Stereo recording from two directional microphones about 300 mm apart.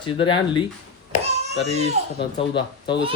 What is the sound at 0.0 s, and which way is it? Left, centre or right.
Speech, centre.